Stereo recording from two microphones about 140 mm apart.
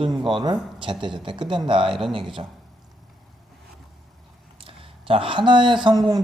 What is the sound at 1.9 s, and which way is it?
Speech, centre (ahead or behind).